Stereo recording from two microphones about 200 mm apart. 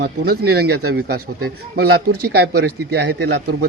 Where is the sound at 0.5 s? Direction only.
50° right (ahead or behind).